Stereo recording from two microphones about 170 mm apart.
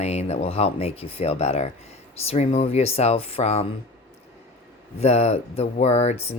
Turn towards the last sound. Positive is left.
turn(degrees=40)  # may be behind; listen again after turning